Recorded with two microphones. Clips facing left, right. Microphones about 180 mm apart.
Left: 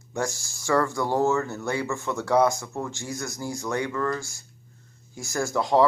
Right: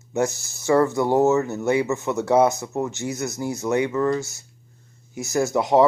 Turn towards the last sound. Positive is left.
turn(degrees=-20)  # may be behind; listen again after turning